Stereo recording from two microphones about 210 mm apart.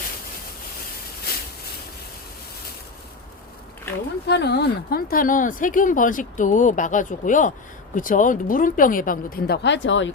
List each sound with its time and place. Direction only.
4.3 s speech: 50° left (ahead or behind)